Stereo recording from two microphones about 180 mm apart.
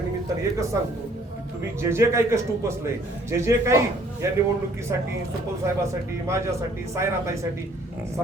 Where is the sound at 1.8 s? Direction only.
15° right (ahead or behind).